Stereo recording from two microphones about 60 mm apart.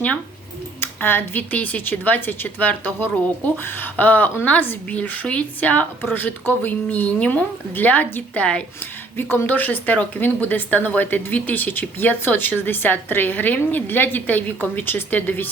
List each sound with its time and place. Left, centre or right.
0.8 s speech: left
9.1 s speech: left